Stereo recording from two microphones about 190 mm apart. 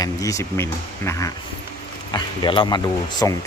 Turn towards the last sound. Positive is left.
turn(degrees=20)  # may be behind; listen again after turning